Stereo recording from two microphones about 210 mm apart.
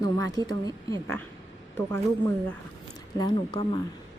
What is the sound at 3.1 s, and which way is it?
Speech, 20° left (ahead or behind).